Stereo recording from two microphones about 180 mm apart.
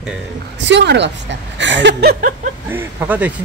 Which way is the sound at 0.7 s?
75° right (ahead or behind).